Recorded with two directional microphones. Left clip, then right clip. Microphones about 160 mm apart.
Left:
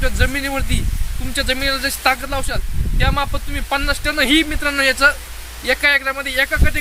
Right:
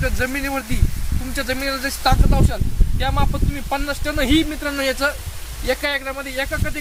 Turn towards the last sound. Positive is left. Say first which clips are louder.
# left 6 dB
turn(degrees=5)  # may be behind; listen again after turning